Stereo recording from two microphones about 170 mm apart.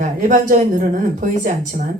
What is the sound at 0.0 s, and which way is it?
Speech, 50° right (ahead or behind).